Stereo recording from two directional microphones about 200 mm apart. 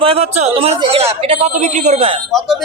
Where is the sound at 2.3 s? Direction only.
Centre (ahead or behind).